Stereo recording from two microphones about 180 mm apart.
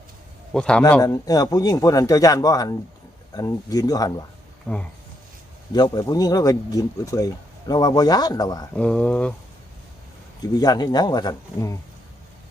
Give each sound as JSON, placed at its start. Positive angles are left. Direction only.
{"t": 0.5, "sound": "speech", "side_deg": 5}
{"t": 1.0, "sound": "speech", "side_deg": 20}
{"t": 4.7, "sound": "speech", "side_deg": 5}
{"t": 5.7, "sound": "speech", "side_deg": 25}
{"t": 8.7, "sound": "speech", "side_deg": 5}
{"t": 10.4, "sound": "speech", "side_deg": 20}